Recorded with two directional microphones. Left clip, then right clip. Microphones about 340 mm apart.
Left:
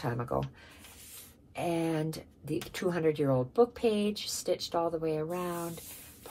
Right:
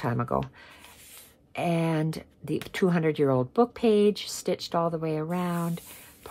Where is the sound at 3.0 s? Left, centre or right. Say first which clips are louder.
Even; right.